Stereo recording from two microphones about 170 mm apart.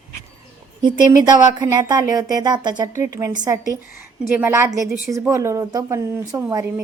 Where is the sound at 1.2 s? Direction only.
25° right (ahead or behind).